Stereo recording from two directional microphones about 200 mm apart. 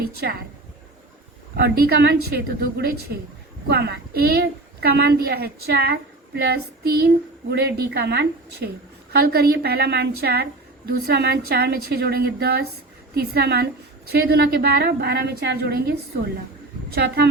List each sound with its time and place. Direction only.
0.0 s a woman's voice: 50° right (ahead or behind)
1.5 s a woman's voice: 50° right (ahead or behind)